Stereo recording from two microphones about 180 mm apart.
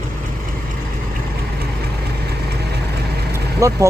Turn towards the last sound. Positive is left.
turn(degrees=-15)  # may be behind; listen again after turning